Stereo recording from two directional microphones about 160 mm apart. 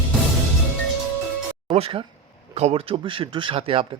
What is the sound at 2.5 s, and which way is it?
Speech, 40° right (ahead or behind).